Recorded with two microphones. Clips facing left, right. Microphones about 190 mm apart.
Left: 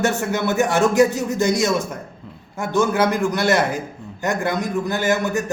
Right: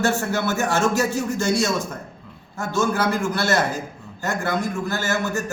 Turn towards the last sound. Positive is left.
turn(degrees=20)  # may be behind; listen again after turning